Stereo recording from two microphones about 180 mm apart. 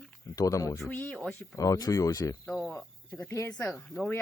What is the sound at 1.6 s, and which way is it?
Speech, 20° left (ahead or behind).